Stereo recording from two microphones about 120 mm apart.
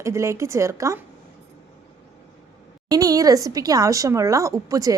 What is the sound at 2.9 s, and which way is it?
A woman's voice, 30° right (ahead or behind).